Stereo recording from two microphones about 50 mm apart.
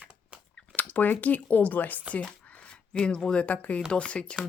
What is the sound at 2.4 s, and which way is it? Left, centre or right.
A woman's voice, left.